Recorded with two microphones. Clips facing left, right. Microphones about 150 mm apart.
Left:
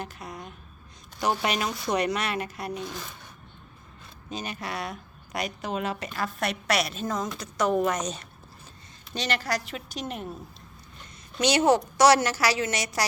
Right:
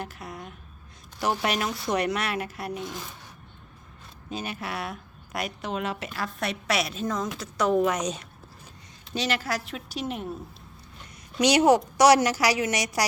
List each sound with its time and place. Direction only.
0.0 s a sound: centre (ahead or behind)
1.2 s a woman's voice: centre (ahead or behind)
4.3 s a woman's voice: 5° right (ahead or behind)
11.3 s a woman's voice: 15° right (ahead or behind)